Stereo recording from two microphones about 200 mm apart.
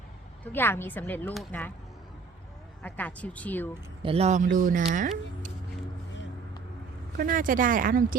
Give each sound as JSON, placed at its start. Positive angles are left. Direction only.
{"t": 0.4, "sound": "a woman's voice", "side_deg": 10}
{"t": 2.8, "sound": "a woman's voice", "side_deg": 10}
{"t": 4.0, "sound": "speech", "side_deg": -30}
{"t": 7.2, "sound": "speech", "side_deg": -45}